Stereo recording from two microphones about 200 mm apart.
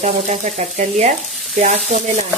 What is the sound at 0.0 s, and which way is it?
Frying, 35° right (ahead or behind).